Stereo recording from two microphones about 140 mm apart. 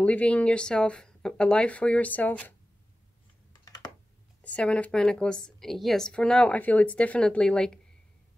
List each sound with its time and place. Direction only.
0.0 s a woman's voice: 10° left (ahead or behind)
3.6 s computer keyboard: 30° left (ahead or behind)
4.4 s a woman's voice: 10° left (ahead or behind)